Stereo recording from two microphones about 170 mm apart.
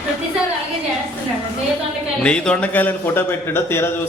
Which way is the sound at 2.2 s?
5° left (ahead or behind).